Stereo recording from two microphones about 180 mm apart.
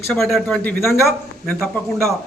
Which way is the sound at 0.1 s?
Centre (ahead or behind).